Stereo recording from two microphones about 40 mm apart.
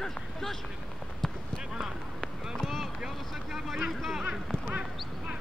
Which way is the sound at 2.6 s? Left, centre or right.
Centre.